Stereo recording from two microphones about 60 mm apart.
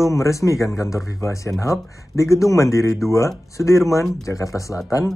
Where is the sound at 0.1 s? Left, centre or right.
Left.